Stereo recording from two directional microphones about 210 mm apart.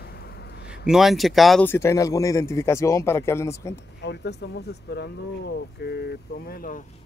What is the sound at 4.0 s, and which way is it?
Speech, 55° left (ahead or behind).